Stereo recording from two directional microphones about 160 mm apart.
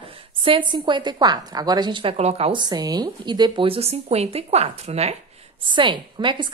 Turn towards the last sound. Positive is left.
turn(degrees=-30)  # may be behind; listen again after turning